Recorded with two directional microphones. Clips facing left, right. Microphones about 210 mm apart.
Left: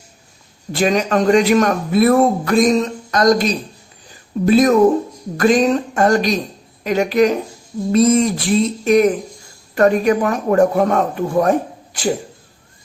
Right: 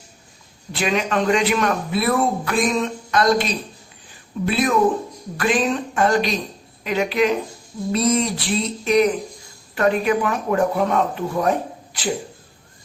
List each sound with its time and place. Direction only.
0.7 s speech: 40° left (ahead or behind)